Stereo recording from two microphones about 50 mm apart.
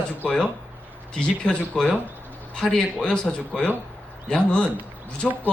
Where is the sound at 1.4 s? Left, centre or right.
Centre.